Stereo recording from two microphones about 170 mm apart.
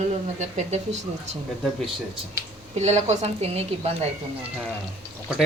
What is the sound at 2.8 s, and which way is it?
Speech, 40° right (ahead or behind).